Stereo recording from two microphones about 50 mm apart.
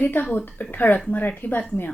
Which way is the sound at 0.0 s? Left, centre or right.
Left.